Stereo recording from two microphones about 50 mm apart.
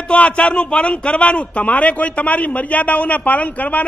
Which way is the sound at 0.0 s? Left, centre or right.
Left.